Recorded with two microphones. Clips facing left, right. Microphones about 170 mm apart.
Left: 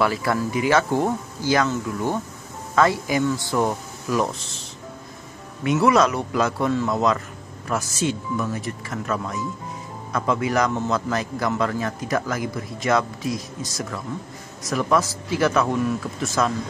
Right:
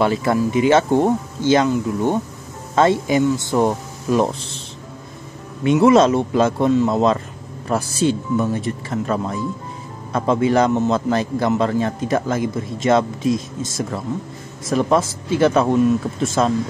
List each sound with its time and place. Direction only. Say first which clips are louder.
0.0 s a man's voice: right 4 dB; 25° right (ahead or behind)
5.6 s a man's voice: right 5 dB; 25° right (ahead or behind)